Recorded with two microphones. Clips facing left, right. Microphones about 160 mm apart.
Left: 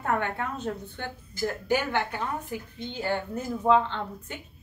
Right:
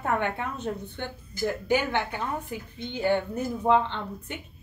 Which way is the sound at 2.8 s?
15° right (ahead or behind).